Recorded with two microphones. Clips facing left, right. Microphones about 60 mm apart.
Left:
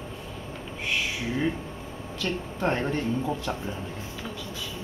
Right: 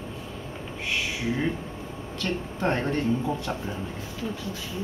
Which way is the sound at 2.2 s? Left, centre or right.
Centre.